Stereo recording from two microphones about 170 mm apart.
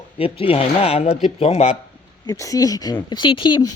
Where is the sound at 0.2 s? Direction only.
35° left (ahead or behind).